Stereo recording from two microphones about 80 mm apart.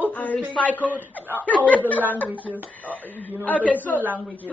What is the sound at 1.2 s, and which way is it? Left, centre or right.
Speech, right.